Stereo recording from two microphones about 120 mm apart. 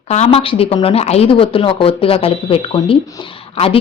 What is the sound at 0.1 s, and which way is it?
A woman's voice, 65° left (ahead or behind).